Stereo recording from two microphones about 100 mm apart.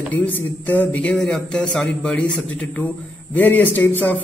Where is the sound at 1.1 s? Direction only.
5° left (ahead or behind).